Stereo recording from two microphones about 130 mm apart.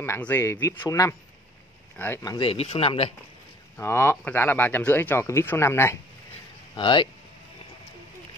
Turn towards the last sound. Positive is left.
turn(degrees=35)  # may be behind; listen again after turning